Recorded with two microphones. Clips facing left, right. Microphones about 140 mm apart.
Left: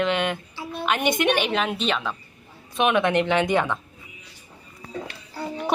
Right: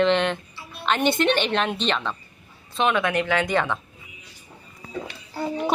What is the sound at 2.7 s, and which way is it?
Speech, 15° left (ahead or behind).